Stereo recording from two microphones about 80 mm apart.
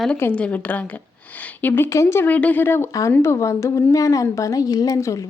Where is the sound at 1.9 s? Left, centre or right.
Left.